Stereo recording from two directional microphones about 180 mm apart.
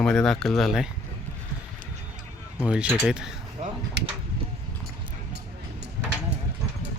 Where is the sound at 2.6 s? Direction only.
5° right (ahead or behind).